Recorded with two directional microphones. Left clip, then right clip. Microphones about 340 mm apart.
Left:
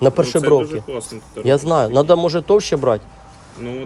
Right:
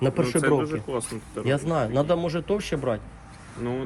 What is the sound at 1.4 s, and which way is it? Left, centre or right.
A man's voice, centre.